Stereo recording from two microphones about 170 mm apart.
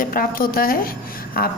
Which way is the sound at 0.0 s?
55° left (ahead or behind).